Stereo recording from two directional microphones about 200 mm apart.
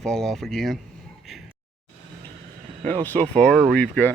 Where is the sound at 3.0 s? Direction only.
10° left (ahead or behind).